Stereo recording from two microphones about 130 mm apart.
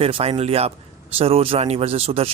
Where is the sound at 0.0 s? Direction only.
50° right (ahead or behind).